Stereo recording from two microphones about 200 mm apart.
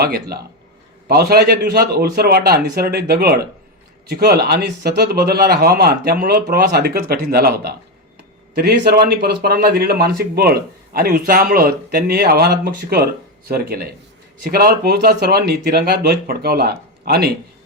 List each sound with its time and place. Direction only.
0.0 s a man's voice: 50° right (ahead or behind)